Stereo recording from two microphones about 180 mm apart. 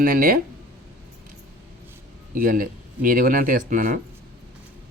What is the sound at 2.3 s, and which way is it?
Speech, 50° right (ahead or behind).